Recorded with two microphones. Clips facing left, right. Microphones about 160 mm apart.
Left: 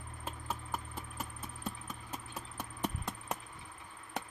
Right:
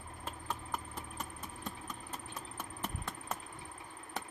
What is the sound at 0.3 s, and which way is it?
Clip-clop, 5° left (ahead or behind).